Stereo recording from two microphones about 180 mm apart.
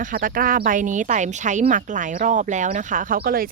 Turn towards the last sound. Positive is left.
turn(degrees=-55)  # may be behind; listen again after turning